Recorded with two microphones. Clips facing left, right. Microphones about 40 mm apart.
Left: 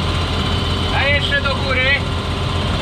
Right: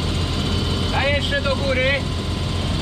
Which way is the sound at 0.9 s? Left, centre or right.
Left.